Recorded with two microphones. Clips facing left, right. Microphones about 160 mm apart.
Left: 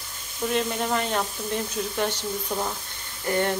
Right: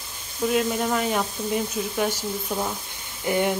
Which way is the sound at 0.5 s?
5° right (ahead or behind).